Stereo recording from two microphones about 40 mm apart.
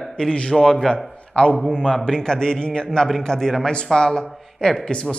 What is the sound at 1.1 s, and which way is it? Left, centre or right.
A man's voice, left.